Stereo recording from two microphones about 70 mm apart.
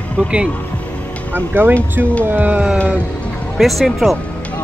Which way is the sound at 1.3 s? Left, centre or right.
Right.